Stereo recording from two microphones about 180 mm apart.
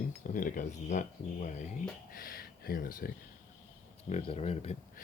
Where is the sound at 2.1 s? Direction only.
55° left (ahead or behind).